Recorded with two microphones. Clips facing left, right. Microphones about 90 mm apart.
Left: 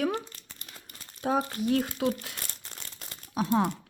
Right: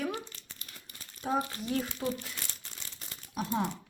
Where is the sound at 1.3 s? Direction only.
65° left (ahead or behind).